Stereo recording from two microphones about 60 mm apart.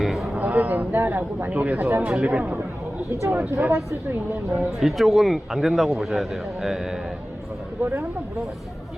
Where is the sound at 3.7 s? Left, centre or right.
Right.